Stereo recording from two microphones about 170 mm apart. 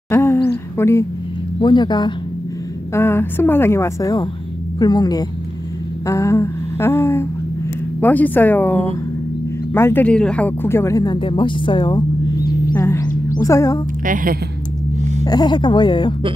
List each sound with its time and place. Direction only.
0.1 s a sound: 15° left (ahead or behind)
0.7 s a woman's voice: 15° left (ahead or behind)
1.6 s speech: 25° left (ahead or behind)
2.9 s a woman's voice: 15° left (ahead or behind)
6.0 s a sound: 15° left (ahead or behind)
8.0 s a woman's voice: 10° left (ahead or behind)
9.8 s speech: 15° left (ahead or behind); by 12.0 s 30° left (ahead or behind)
12.7 s a sound: 15° left (ahead or behind)
13.4 s speech: 20° left (ahead or behind)
14.0 s a woman's voice: 55° right (ahead or behind)
15.0 s a sound: 45° right (ahead or behind)
15.2 s speech: 25° left (ahead or behind)